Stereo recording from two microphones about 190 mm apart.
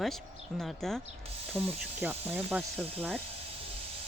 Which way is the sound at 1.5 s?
10° right (ahead or behind).